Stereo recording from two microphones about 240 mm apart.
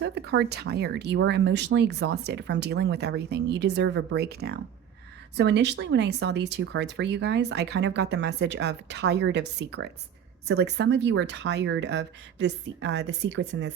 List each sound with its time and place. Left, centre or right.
0.0 s speech: right